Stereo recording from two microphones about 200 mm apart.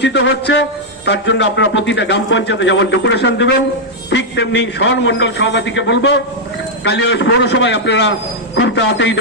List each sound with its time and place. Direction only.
0.0 s a man's voice: 60° left (ahead or behind)